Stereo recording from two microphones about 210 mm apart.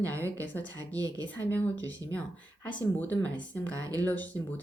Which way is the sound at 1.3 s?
10° left (ahead or behind).